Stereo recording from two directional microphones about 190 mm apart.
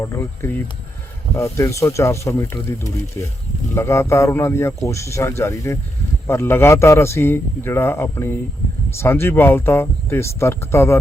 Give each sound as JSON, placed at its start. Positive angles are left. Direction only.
{"t": 0.0, "sound": "a man's voice", "side_deg": 15}